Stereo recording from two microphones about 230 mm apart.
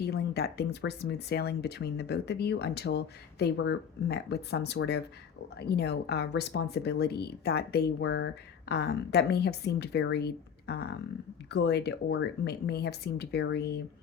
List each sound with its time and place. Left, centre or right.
0.0 s speech: left